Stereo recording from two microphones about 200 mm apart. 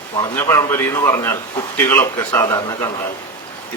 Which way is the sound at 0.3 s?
10° left (ahead or behind).